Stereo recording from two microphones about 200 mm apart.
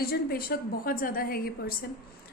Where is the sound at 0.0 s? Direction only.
50° left (ahead or behind).